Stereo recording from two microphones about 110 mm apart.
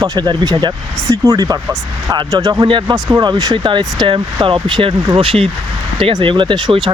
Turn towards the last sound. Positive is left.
turn(degrees=-45)  # may be behind; listen again after turning